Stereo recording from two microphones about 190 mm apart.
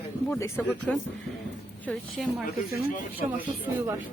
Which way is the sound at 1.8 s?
Centre (ahead or behind).